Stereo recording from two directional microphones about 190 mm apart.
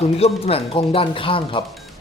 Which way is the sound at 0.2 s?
30° left (ahead or behind).